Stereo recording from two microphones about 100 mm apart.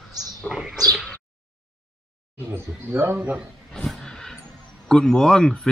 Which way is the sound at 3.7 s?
5° left (ahead or behind).